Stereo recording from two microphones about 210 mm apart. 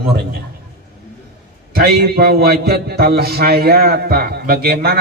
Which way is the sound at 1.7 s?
45° right (ahead or behind).